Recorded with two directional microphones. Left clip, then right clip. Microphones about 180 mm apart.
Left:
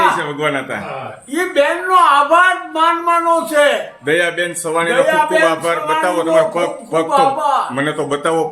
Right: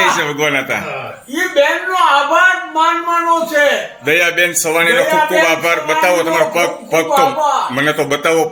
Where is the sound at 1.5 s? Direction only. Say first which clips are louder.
Left 1 dB; 20° left (ahead or behind).